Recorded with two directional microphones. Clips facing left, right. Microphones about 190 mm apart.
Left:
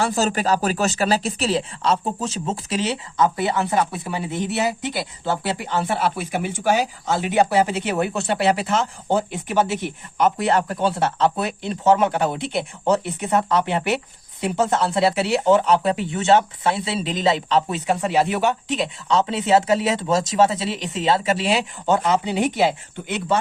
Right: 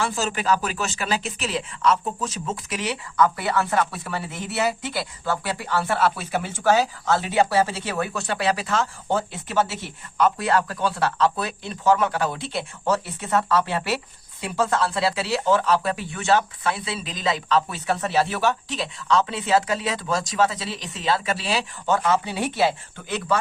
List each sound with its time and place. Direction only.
0.0 s speech: 40° left (ahead or behind); by 23.4 s 20° left (ahead or behind)